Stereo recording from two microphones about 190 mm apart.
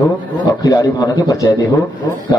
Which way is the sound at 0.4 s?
20° left (ahead or behind).